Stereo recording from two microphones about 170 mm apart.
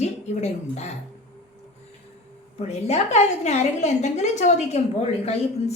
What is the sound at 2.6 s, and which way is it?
A woman's voice, 40° left (ahead or behind).